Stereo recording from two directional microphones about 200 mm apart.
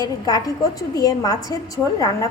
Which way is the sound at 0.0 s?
20° left (ahead or behind).